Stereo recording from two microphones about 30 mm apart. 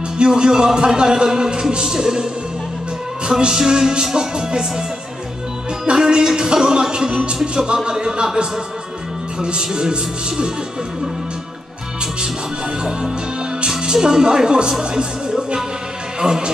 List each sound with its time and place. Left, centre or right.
0.2 s speech: right
3.3 s speech: right
5.9 s speech: right
9.4 s speech: right
14.0 s speech: right